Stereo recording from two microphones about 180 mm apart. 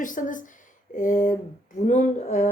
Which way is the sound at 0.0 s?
45° left (ahead or behind).